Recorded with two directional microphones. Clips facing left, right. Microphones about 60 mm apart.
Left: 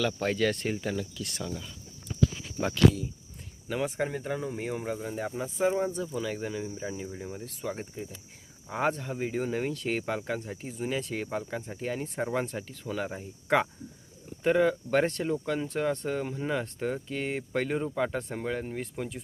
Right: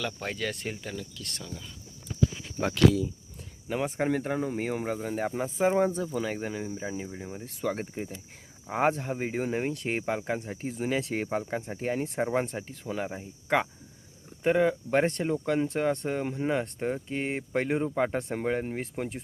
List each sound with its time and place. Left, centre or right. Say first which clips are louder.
0.2 s speech: left 6 dB; centre
3.7 s speech: right 2 dB; right
6.1 s speech: right 1 dB; right; by 7.4 s centre
7.6 s speech: right 5 dB; right
8.7 s speech: right 3 dB; right
10.6 s speech: right 3 dB; right
13.1 s speech: left 2 dB; centre; by 19.2 s right